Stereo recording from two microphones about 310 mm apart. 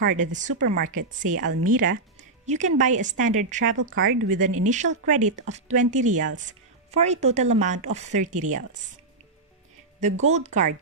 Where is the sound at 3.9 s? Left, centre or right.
Right.